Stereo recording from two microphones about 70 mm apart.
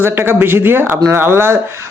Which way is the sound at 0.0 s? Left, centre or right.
Right.